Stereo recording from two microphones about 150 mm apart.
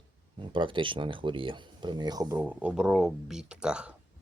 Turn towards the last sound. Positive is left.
turn(degrees=-5)  # may be behind; listen again after turning